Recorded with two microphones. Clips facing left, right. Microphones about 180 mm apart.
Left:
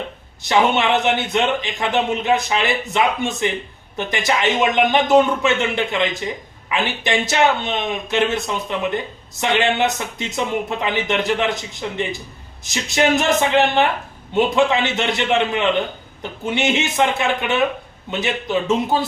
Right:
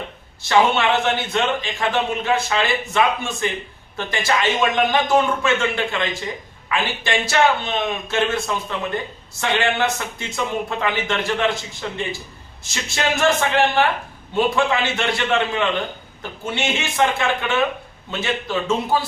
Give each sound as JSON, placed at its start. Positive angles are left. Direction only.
{"t": 0.4, "sound": "speech", "side_deg": 20}